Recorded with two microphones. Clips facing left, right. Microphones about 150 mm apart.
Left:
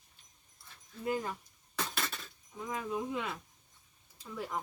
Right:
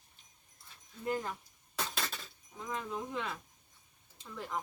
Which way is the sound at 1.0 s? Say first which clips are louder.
Left 1 dB; 10° left (ahead or behind).